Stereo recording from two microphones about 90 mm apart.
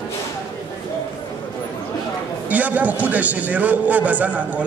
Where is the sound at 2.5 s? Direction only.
15° right (ahead or behind).